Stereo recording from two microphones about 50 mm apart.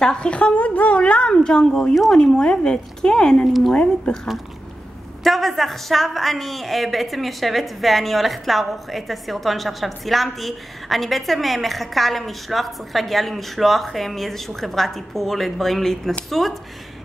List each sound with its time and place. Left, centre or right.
0.0 s a woman's voice: centre
5.2 s a woman's voice: centre